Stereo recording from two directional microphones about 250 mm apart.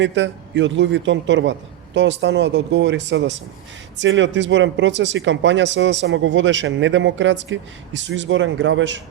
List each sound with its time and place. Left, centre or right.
0.0 s speech: right